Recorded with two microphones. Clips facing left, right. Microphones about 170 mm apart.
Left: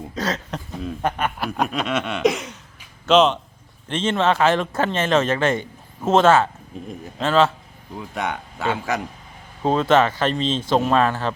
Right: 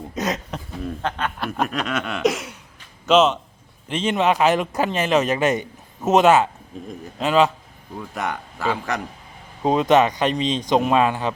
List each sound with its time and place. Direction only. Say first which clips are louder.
0.1 s speech: right 1 dB; 20° right (ahead or behind)
0.5 s a man's voice: even; centre (ahead or behind)
1.5 s speech: even; centre (ahead or behind)
7.9 s speech: left 1 dB; centre (ahead or behind)
9.6 s speech: right 1 dB; 15° right (ahead or behind)